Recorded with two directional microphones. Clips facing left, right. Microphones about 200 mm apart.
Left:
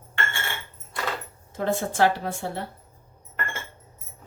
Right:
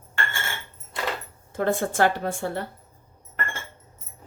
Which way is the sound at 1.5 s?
50° right (ahead or behind).